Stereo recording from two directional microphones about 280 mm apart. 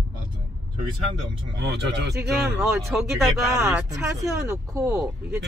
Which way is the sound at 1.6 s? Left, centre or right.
Right.